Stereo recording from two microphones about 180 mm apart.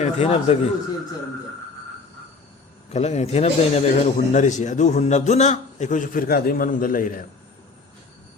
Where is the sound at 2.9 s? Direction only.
35° left (ahead or behind).